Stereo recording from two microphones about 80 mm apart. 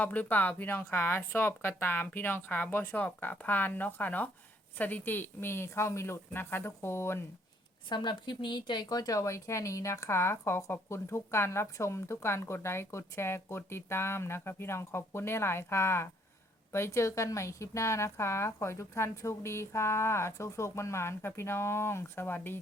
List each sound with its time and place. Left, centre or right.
0.0 s a woman's voice: left
7.9 s a woman's voice: left